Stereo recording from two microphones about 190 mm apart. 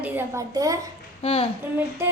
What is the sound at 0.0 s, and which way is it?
Speech, 15° right (ahead or behind).